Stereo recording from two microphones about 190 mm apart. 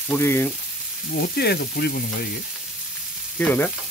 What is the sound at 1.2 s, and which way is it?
Sizzle, 55° left (ahead or behind).